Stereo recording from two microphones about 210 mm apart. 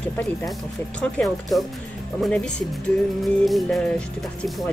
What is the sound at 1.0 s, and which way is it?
Speech, 5° left (ahead or behind).